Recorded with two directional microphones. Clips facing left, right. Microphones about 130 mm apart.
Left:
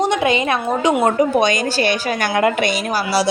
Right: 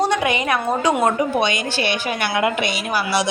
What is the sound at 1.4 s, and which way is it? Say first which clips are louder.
A woman's voice: left 4 dB; 45° left (ahead or behind).